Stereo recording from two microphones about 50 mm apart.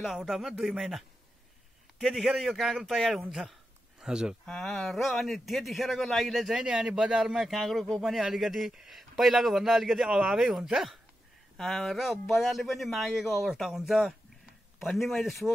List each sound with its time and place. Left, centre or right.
0.0 s a man's voice: centre
4.5 s a man's voice: centre
7.3 s a man's voice: centre
10.0 s speech: centre
10.4 s a man's voice: centre
11.5 s a man's voice: centre